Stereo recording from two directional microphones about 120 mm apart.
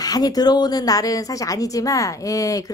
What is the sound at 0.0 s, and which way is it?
A woman's voice, 35° left (ahead or behind).